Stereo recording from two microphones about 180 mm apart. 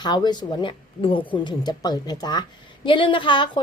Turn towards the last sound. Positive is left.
turn(degrees=25)  # may be behind; listen again after turning